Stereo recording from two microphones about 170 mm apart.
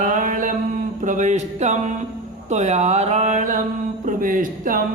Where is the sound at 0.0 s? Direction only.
50° right (ahead or behind).